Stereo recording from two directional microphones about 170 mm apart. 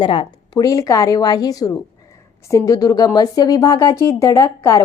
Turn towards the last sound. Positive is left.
turn(degrees=15)  # may be behind; listen again after turning